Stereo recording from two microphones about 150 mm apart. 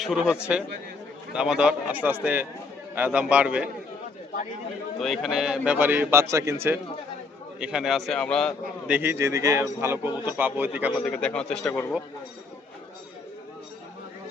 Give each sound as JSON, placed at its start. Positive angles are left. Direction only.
{"t": 0.0, "sound": "a man's voice", "side_deg": -5}
{"t": 4.9, "sound": "a man's voice", "side_deg": 0}
{"t": 7.6, "sound": "a man's voice", "side_deg": -5}
{"t": 8.9, "sound": "a man's voice", "side_deg": -15}
{"t": 10.9, "sound": "a man's voice", "side_deg": 5}